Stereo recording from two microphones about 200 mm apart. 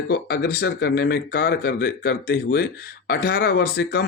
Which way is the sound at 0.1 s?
50° left (ahead or behind).